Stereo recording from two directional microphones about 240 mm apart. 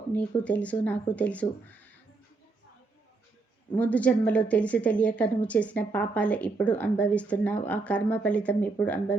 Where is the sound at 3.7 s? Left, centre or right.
Centre.